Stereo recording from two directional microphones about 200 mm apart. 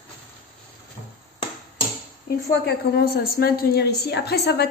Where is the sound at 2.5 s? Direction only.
55° left (ahead or behind).